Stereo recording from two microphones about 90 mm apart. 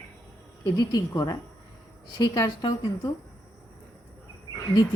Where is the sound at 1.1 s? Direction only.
40° left (ahead or behind).